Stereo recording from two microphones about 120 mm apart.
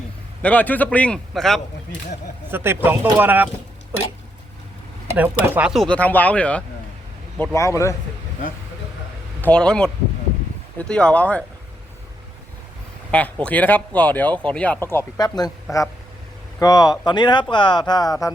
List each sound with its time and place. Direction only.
0.4 s a man's voice: 15° left (ahead or behind)
2.5 s speech: 20° right (ahead or behind)
5.1 s speech: 15° right (ahead or behind)
5.7 s speech: 5° left (ahead or behind)
7.5 s a man's voice: 25° left (ahead or behind)
9.4 s speech: 10° left (ahead or behind)
13.1 s a man's voice: 10° left (ahead or behind)
15.2 s speech: 35° left (ahead or behind)
16.6 s speech: 30° left (ahead or behind)